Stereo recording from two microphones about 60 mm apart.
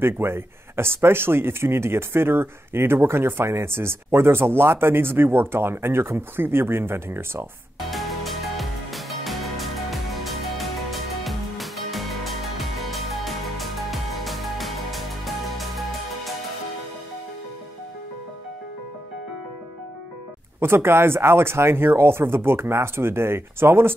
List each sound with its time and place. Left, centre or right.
0.0 s speech: right
7.8 s music: centre
20.6 s speech: right